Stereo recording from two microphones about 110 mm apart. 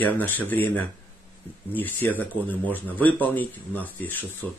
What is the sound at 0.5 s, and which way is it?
Speech, 15° left (ahead or behind).